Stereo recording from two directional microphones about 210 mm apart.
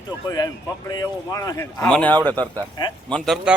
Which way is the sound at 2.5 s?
20° left (ahead or behind).